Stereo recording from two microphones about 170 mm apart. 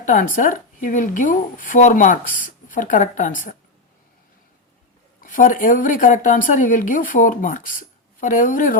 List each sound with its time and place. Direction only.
0.0 s speech: 50° left (ahead or behind)
5.2 s speech: 50° left (ahead or behind)